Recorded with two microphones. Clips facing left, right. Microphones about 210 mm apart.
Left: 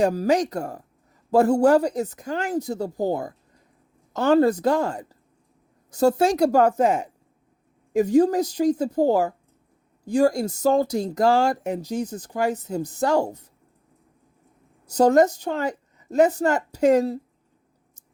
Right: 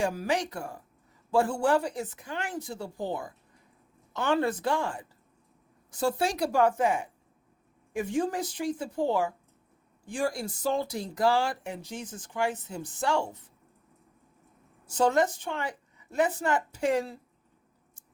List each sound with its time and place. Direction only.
0.0 s speech: 40° left (ahead or behind)
14.8 s speech: 40° left (ahead or behind)